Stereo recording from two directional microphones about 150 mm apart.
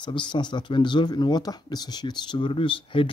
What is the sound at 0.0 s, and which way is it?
Speech, 30° left (ahead or behind).